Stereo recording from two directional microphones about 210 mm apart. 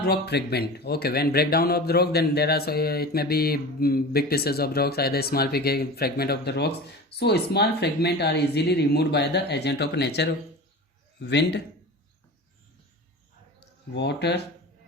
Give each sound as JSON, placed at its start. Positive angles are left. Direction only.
{"t": 0.0, "sound": "a man's voice", "side_deg": 50}
{"t": 13.9, "sound": "speech", "side_deg": 55}